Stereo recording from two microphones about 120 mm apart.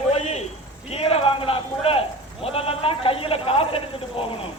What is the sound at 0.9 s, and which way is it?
A man's voice, 50° left (ahead or behind).